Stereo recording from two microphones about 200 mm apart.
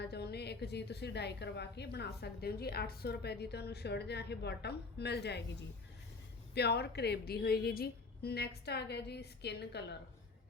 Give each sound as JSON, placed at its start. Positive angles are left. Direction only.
{"t": 0.0, "sound": "a woman's voice", "side_deg": 55}
{"t": 6.5, "sound": "a woman's voice", "side_deg": 55}